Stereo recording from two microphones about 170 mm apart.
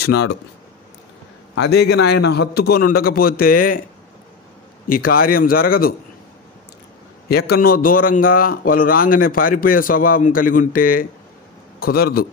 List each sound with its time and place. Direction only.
0.0 s a man's voice: 70° left (ahead or behind)
1.6 s a man's voice: 80° left; by 3.8 s 55° left (ahead or behind)
4.8 s a man's voice: 60° left (ahead or behind)
7.2 s a man's voice: 65° left (ahead or behind)